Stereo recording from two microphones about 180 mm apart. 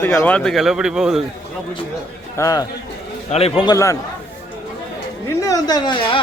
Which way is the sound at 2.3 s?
20° left (ahead or behind).